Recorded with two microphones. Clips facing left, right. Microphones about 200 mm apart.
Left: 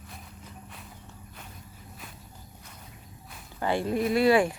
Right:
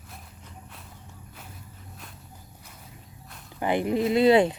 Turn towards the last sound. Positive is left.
turn(degrees=-20)  # may be behind; listen again after turning